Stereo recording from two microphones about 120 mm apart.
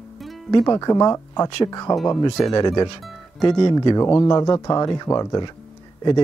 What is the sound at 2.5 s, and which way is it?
Speech, 35° left (ahead or behind).